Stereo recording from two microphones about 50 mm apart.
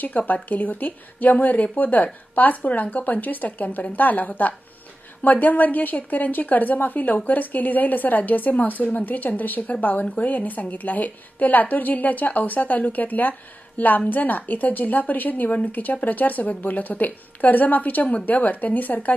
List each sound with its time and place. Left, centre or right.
0.0 s a woman's voice: left